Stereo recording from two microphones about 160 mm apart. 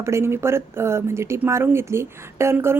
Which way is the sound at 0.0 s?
15° right (ahead or behind).